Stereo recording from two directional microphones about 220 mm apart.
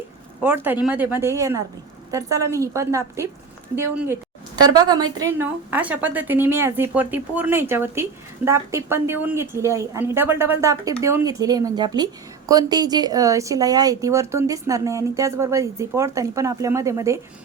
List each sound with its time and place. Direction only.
0.4 s speech: 10° right (ahead or behind)